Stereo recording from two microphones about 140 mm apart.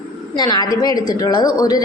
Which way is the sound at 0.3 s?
30° left (ahead or behind).